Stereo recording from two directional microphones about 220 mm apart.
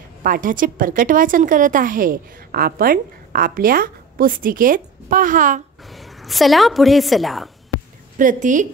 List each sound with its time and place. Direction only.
0.2 s a woman's voice: 40° right (ahead or behind)
5.9 s a woman's voice: centre (ahead or behind)
8.2 s a woman's voice: 35° right (ahead or behind)